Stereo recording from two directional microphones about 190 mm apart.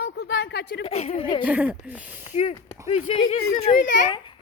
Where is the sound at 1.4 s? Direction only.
10° right (ahead or behind).